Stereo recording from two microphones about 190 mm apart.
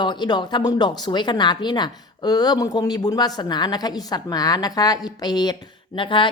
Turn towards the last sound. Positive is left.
turn(degrees=25)  # may be behind; listen again after turning